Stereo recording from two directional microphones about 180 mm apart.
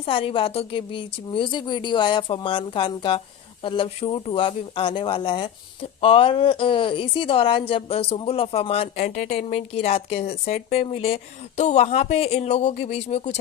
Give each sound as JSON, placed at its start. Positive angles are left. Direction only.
{"t": 0.0, "sound": "a woman's voice", "side_deg": 30}